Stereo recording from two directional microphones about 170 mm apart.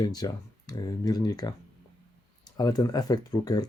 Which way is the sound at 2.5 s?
25° left (ahead or behind).